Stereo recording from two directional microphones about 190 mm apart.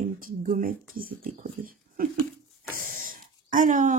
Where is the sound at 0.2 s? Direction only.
45° right (ahead or behind).